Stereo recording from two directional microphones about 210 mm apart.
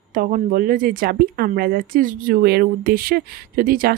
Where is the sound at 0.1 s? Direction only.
40° right (ahead or behind).